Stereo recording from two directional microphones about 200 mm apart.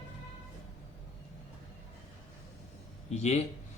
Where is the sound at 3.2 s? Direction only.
35° left (ahead or behind).